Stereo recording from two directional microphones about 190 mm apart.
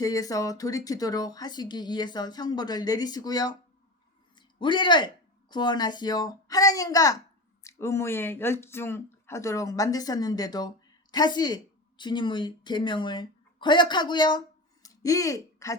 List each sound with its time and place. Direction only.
0.0 s a woman's voice: 20° left (ahead or behind)